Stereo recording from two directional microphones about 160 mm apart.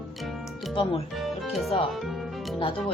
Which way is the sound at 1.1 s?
Centre (ahead or behind).